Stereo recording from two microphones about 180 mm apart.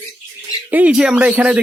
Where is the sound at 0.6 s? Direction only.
10° right (ahead or behind).